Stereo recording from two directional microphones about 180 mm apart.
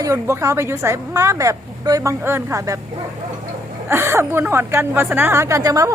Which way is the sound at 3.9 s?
15° right (ahead or behind).